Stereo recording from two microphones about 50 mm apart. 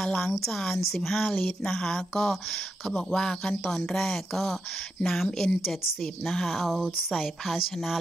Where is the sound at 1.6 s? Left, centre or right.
Centre.